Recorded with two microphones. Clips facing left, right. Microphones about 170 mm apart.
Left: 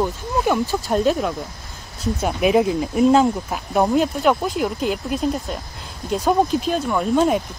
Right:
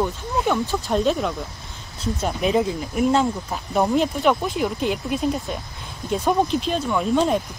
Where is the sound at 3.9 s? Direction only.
Centre (ahead or behind).